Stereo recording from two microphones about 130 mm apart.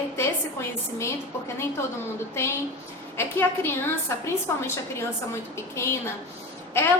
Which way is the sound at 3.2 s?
20° left (ahead or behind).